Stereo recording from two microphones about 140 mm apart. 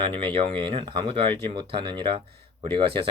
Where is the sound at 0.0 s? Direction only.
40° right (ahead or behind).